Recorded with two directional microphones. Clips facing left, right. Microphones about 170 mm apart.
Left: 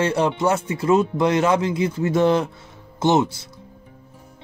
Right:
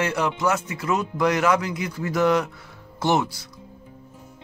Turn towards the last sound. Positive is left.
turn(degrees=20)  # may be behind; listen again after turning